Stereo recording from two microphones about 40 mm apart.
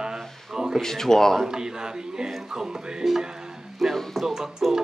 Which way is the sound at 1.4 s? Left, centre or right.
Centre.